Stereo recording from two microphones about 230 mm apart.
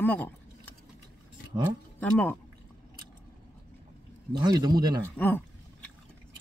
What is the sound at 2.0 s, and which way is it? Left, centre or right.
Speech, centre.